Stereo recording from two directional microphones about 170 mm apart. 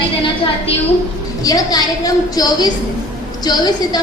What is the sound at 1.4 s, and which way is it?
Speech, 20° left (ahead or behind).